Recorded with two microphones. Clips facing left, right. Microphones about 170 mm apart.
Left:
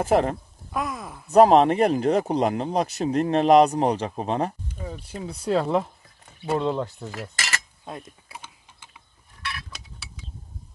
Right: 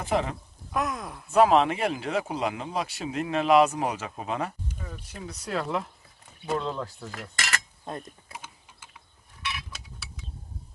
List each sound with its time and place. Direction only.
0.0 s speech: 45° left (ahead or behind)
0.7 s speech: centre (ahead or behind)
1.3 s speech: 40° left (ahead or behind)
7.1 s cutlery: 5° left (ahead or behind)